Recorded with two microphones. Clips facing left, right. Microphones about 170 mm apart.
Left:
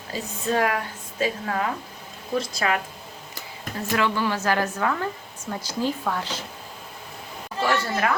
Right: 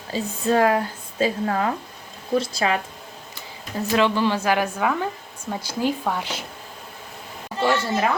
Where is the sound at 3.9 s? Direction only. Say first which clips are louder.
Right 4 dB; 20° right (ahead or behind).